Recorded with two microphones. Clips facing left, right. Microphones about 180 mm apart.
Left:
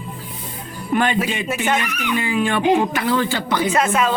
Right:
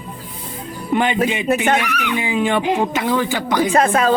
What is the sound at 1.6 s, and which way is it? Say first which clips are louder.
Speech: right 3 dB; 65° right (ahead or behind).